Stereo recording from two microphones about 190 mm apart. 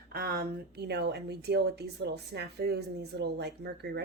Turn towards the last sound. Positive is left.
turn(degrees=-60)  # may be behind; listen again after turning